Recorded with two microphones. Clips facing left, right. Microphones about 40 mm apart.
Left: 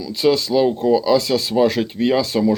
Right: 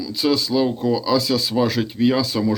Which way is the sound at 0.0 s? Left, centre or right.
Left.